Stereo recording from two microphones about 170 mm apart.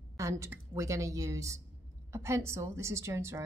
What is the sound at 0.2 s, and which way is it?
A woman's voice, 15° right (ahead or behind).